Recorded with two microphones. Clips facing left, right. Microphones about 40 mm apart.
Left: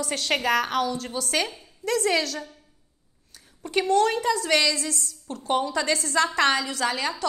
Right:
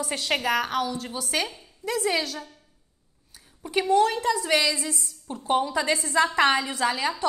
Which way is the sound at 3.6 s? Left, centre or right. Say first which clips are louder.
Even; centre.